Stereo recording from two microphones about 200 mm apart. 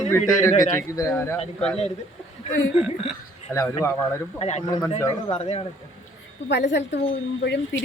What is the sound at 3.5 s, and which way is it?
Speech, 15° left (ahead or behind).